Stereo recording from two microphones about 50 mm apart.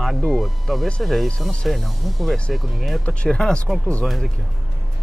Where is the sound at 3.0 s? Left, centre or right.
Left.